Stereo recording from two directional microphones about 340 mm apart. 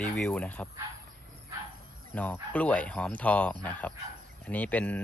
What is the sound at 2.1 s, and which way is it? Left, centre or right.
Speech, centre.